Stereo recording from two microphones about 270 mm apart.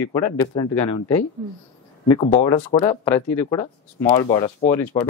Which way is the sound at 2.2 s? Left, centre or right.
Centre.